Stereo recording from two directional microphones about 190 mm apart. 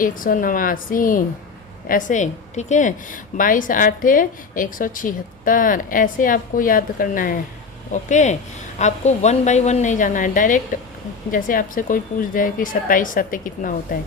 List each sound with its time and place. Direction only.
0.0 s a woman's voice: 45° left (ahead or behind)